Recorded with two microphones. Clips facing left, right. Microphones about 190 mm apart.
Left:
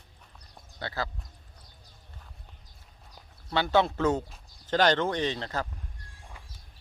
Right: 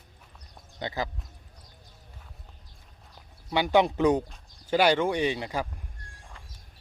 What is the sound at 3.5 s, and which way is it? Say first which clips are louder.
Speech: right 2 dB; 15° right (ahead or behind).